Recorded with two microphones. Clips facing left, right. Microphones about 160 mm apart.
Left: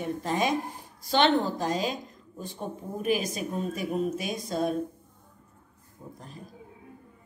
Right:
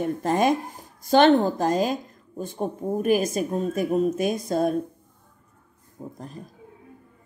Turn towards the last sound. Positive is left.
turn(degrees=-35)  # may be behind; listen again after turning